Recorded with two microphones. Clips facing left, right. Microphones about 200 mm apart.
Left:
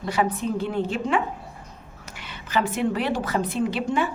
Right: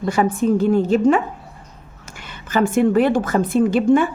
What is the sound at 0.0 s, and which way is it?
Speech, 50° right (ahead or behind).